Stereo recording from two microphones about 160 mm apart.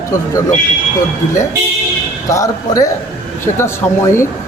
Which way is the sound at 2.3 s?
20° left (ahead or behind).